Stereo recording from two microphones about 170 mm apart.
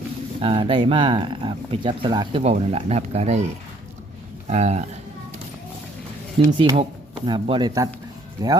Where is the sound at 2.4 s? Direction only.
40° right (ahead or behind).